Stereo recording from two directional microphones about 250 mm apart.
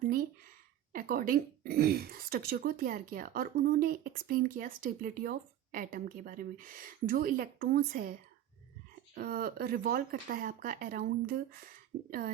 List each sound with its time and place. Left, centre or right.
0.0 s a sound: right
0.9 s speech: right
9.1 s speech: right